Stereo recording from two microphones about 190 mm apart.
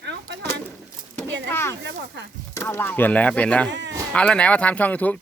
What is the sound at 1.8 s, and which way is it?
Speech, 70° right (ahead or behind).